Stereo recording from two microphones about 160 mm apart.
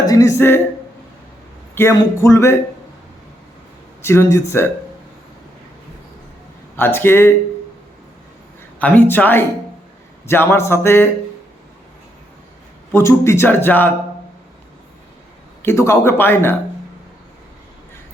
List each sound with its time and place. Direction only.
0.0 s speech: 20° left (ahead or behind)
1.7 s speech: 15° left (ahead or behind)
4.0 s speech: 15° left (ahead or behind)
6.7 s speech: 15° left (ahead or behind)
8.8 s speech: 10° left (ahead or behind)
12.9 s speech: 15° left (ahead or behind)
15.6 s speech: 15° left (ahead or behind)